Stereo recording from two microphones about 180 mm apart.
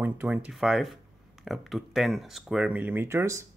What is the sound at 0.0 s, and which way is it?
Speech, 10° right (ahead or behind).